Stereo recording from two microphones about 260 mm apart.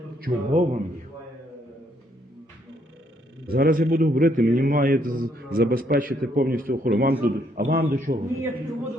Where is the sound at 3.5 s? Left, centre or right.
Right.